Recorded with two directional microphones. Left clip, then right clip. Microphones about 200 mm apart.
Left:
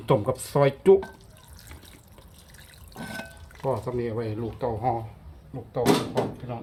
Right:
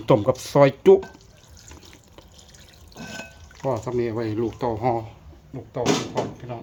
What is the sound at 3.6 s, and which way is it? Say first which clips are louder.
Speech: right 3 dB; 30° right (ahead or behind).